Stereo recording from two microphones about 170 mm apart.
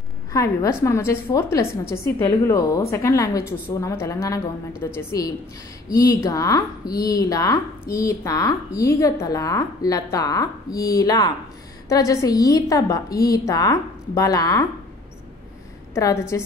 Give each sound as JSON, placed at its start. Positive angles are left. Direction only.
{"t": 0.3, "sound": "a woman's voice", "side_deg": 20}
{"t": 15.9, "sound": "a woman's voice", "side_deg": 20}